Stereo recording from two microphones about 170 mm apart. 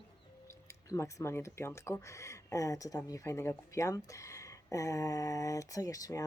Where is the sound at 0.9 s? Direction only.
15° left (ahead or behind).